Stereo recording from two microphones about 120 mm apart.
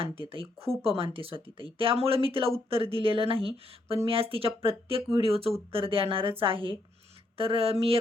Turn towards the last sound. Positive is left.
turn(degrees=-55)  # may be behind; listen again after turning